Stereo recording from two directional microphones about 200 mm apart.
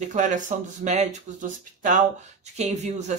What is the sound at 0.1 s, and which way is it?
Speech, 40° right (ahead or behind).